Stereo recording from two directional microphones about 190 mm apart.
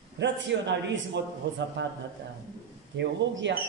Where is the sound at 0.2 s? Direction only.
65° right (ahead or behind).